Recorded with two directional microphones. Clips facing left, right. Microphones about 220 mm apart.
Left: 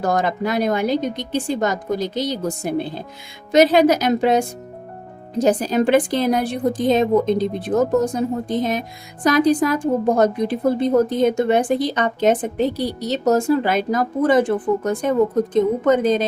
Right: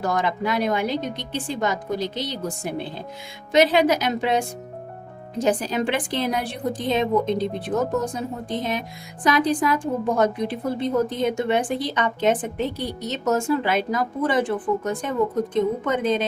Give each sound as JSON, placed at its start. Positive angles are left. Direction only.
{"t": 0.0, "sound": "a woman's voice", "side_deg": 45}